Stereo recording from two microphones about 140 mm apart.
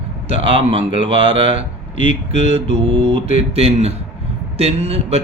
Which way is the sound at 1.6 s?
65° left (ahead or behind).